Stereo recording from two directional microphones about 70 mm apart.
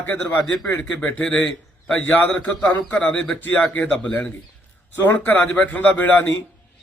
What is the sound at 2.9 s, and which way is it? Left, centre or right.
Speech, centre.